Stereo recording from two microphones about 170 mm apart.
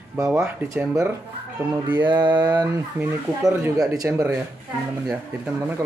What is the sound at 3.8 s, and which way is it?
Speech, 20° right (ahead or behind).